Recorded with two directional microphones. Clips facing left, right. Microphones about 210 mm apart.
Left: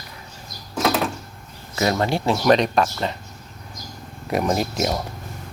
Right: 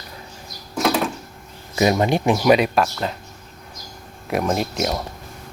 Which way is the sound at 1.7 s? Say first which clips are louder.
Right 3 dB; 15° right (ahead or behind).